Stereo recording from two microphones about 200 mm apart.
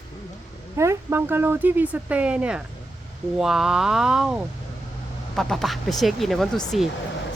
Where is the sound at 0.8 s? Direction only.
10° right (ahead or behind).